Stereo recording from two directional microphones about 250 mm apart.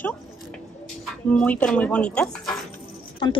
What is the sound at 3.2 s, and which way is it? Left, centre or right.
Speech, centre.